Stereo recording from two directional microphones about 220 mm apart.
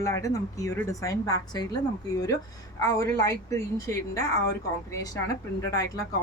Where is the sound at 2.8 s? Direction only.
15° left (ahead or behind).